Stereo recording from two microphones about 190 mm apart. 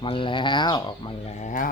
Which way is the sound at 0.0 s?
25° left (ahead or behind).